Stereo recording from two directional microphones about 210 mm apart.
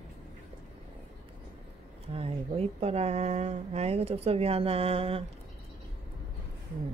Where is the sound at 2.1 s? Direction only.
30° right (ahead or behind).